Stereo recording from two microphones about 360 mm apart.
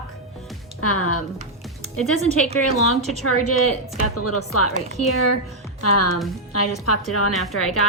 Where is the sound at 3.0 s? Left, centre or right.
Centre.